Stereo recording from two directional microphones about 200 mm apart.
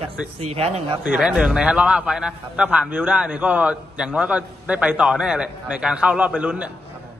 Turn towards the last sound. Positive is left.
turn(degrees=-5)  # may be behind; listen again after turning